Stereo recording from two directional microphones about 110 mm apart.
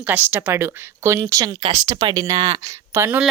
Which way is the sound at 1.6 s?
90° right.